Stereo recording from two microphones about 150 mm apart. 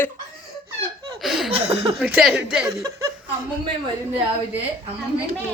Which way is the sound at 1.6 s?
40° right (ahead or behind).